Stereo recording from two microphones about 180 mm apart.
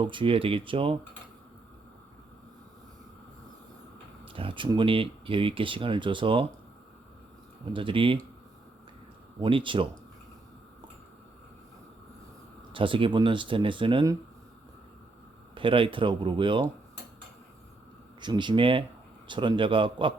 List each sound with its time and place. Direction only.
0.0 s speech: 25° right (ahead or behind)
4.3 s speech: 30° right (ahead or behind)
7.6 s speech: 30° right (ahead or behind)
9.4 s speech: 30° right (ahead or behind)
12.7 s speech: 30° right (ahead or behind)
15.5 s speech: 30° right (ahead or behind)
18.2 s speech: 25° right (ahead or behind)